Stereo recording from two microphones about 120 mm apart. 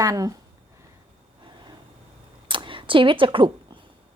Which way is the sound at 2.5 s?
45° right (ahead or behind).